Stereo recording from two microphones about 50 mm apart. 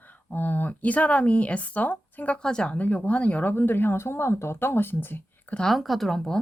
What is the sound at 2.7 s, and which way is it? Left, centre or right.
Speech, left.